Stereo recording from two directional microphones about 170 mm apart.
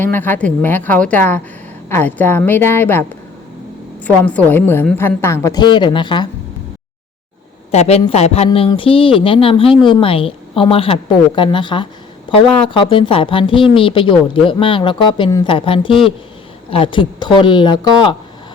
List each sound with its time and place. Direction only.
0.0 s a woman's voice: 10° left (ahead or behind)
4.0 s a woman's voice: 10° left (ahead or behind); by 6.2 s 25° left (ahead or behind)
7.7 s a woman's voice: 40° left (ahead or behind)